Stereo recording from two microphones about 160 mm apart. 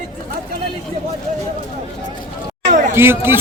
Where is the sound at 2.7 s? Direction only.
50° right (ahead or behind).